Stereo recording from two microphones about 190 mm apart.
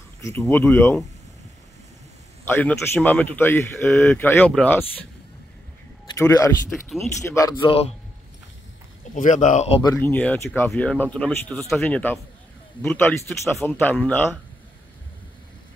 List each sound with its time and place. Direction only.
0.2 s speech: 15° left (ahead or behind)
2.4 s speech: 10° left (ahead or behind)
6.0 s speech: 15° left (ahead or behind)
6.7 s speech: centre (ahead or behind)
7.3 s speech: 20° left (ahead or behind)
9.1 s speech: 40° left (ahead or behind)
9.8 s speech: 15° left (ahead or behind)